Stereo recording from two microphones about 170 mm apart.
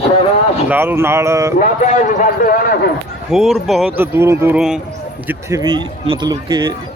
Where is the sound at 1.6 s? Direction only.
50° left (ahead or behind).